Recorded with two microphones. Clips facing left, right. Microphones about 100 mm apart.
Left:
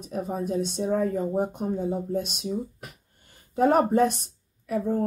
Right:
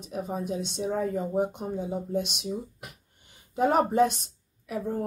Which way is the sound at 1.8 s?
Centre (ahead or behind).